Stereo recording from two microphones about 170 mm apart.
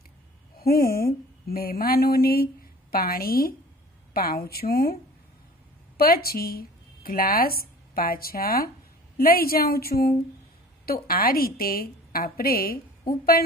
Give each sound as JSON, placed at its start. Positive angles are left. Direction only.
{"t": 0.6, "sound": "a woman's voice", "side_deg": 60}
{"t": 5.9, "sound": "a woman's voice", "side_deg": 65}